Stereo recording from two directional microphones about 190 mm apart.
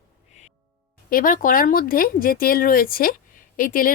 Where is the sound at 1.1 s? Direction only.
45° left (ahead or behind).